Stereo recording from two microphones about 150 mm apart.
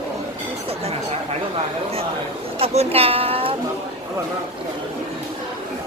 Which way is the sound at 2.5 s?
45° right (ahead or behind).